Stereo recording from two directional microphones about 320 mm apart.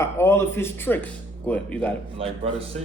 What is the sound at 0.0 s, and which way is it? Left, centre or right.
Speech, centre.